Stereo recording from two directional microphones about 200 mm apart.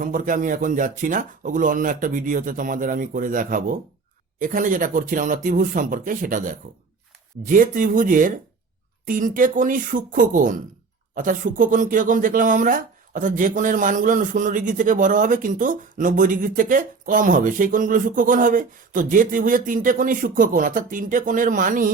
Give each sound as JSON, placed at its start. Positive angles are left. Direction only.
{"t": 0.0, "sound": "speech", "side_deg": -40}